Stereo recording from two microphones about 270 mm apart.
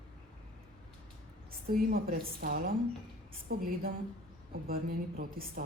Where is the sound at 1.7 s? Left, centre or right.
Right.